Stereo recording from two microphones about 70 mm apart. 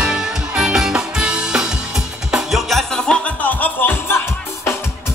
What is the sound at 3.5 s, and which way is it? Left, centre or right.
Music, left.